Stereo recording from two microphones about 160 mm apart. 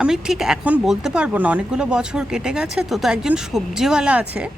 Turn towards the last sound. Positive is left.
turn(degrees=-5)  # may be behind; listen again after turning